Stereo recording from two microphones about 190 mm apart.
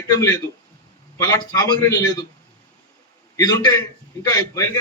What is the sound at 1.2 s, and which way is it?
Speech, 15° left (ahead or behind).